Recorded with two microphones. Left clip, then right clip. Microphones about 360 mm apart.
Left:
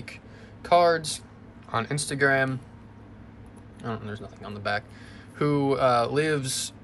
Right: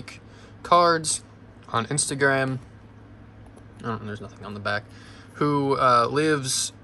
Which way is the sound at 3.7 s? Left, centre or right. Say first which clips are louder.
Right 3 dB; centre.